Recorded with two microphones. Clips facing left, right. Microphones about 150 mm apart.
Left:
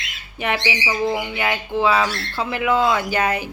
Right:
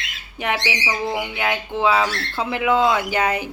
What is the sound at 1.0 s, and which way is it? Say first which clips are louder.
Speech: left 1 dB; 10° right (ahead or behind).